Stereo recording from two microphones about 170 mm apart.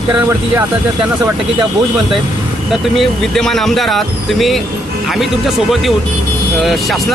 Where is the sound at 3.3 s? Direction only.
5° left (ahead or behind).